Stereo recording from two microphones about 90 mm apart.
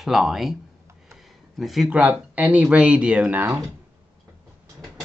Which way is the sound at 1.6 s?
Centre (ahead or behind).